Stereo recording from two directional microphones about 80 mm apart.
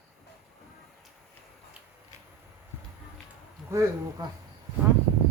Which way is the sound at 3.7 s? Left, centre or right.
Right.